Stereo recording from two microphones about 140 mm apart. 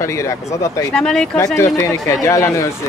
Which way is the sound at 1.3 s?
20° left (ahead or behind).